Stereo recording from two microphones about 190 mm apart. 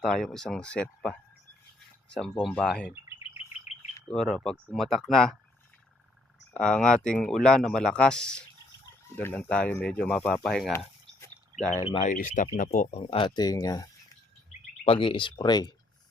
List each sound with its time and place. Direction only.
0.0 s speech: 5° left (ahead or behind)
2.1 s speech: 5° left (ahead or behind)
4.1 s speech: centre (ahead or behind)
6.5 s speech: 5° left (ahead or behind)
12.0 s speech: 45° left (ahead or behind)
13.0 s speech: 25° left (ahead or behind)
14.8 s speech: 25° left (ahead or behind)